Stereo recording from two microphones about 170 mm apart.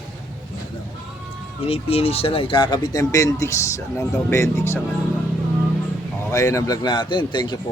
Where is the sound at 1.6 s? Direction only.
35° left (ahead or behind); by 4.8 s 15° left (ahead or behind).